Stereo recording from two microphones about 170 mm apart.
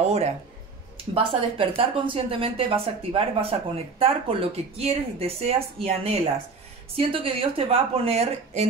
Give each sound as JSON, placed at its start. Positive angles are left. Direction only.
{"t": 0.9, "sound": "speech", "side_deg": -30}